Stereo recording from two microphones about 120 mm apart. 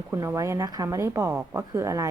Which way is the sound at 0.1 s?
25° right (ahead or behind).